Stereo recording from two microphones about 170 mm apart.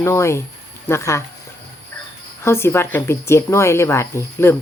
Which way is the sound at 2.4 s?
15° left (ahead or behind).